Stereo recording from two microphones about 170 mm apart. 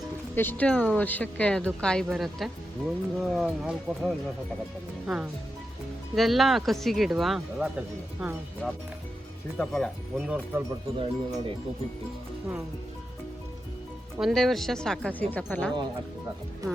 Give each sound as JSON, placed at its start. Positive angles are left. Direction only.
{"t": 0.3, "sound": "speech", "side_deg": 10}
{"t": 9.6, "sound": "speech", "side_deg": 5}
{"t": 10.9, "sound": "speech", "side_deg": -30}
{"t": 14.2, "sound": "speech", "side_deg": 0}